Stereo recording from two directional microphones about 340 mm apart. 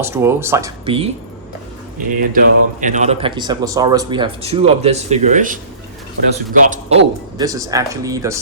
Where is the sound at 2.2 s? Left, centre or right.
Right.